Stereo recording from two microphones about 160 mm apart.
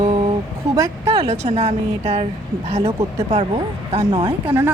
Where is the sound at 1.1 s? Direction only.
40° right (ahead or behind).